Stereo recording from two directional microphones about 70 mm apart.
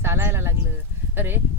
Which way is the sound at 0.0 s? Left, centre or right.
Right.